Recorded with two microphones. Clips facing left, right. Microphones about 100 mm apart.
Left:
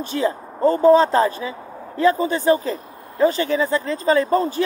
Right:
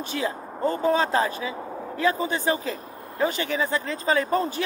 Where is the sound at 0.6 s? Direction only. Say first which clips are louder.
Left 9 dB; 40° left (ahead or behind).